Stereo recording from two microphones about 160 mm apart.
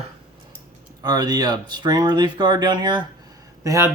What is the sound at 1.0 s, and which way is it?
Speech, 25° right (ahead or behind).